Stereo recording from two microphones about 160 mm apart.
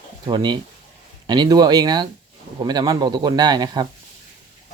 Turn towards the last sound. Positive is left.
turn(degrees=-25)  # may be behind; listen again after turning